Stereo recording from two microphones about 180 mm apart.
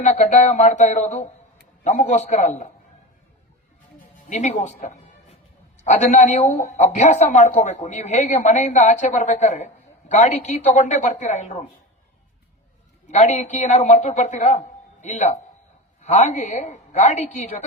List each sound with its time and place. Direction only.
0.0 s a man's voice: 40° left (ahead or behind)
4.3 s a man's voice: 40° left (ahead or behind)
13.1 s a man's voice: 40° left (ahead or behind)